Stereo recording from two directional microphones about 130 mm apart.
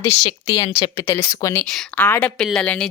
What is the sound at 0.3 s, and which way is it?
Speech, 35° left (ahead or behind).